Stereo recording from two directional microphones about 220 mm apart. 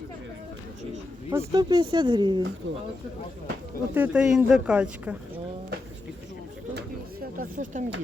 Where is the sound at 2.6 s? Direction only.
60° right (ahead or behind).